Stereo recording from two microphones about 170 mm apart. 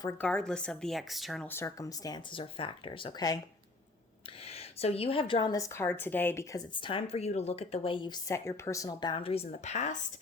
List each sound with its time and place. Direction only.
0.2 s speech: 5° left (ahead or behind)
1.5 s a woman's voice: 15° left (ahead or behind)
4.4 s a woman's voice: 35° left (ahead or behind)